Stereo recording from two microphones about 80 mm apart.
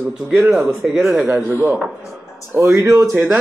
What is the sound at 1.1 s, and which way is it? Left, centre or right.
Speech, centre.